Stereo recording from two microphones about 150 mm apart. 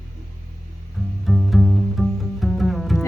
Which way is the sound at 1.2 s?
Centre (ahead or behind).